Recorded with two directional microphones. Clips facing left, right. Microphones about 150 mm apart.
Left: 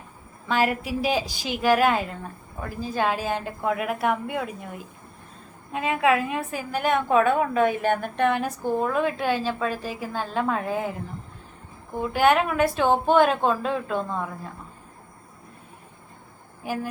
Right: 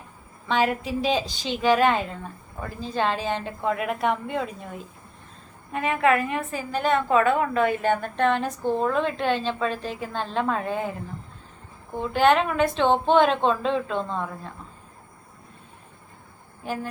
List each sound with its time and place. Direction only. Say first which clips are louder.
0.4 s a woman's voice: even; 5° left (ahead or behind)
11.9 s a woman's voice: even; 10° left (ahead or behind)
16.6 s speech: left 1 dB; 5° left (ahead or behind)